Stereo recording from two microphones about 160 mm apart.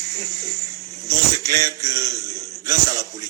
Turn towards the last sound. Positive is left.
turn(degrees=-20)  # may be behind; listen again after turning